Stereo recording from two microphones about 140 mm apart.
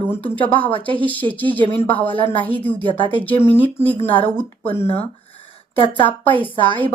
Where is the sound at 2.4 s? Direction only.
10° left (ahead or behind).